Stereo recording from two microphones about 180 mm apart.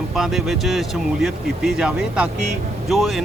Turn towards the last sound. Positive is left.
turn(degrees=0)  # may be behind; listen again after turning